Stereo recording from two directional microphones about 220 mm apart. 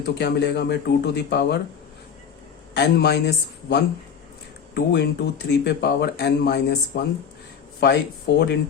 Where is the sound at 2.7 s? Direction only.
45° left (ahead or behind).